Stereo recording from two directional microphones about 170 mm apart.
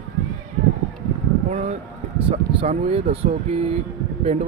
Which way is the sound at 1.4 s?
40° right (ahead or behind).